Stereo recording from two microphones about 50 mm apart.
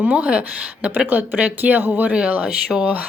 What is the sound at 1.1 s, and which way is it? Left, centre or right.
A woman's voice, right.